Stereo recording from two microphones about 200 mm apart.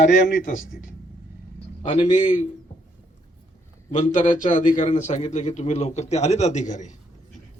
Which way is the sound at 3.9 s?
35° left (ahead or behind).